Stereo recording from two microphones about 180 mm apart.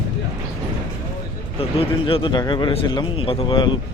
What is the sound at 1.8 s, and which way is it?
Speech, 30° left (ahead or behind).